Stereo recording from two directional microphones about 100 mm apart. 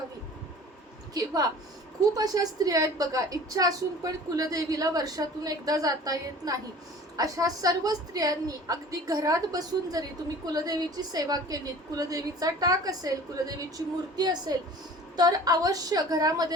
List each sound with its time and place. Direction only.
1.1 s a woman's voice: 40° right (ahead or behind)